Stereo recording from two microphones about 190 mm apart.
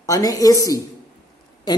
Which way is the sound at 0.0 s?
20° left (ahead or behind).